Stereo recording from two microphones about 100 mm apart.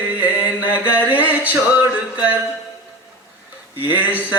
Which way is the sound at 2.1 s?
15° right (ahead or behind).